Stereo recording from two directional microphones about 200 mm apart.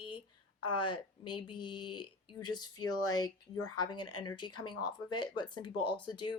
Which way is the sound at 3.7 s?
20° left (ahead or behind).